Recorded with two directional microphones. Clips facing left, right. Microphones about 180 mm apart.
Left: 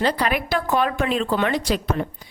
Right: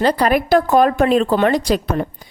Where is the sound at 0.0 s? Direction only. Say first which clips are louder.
Right 6 dB; 40° right (ahead or behind).